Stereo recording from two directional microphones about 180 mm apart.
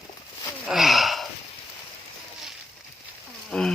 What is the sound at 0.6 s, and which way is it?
Gasp, centre (ahead or behind).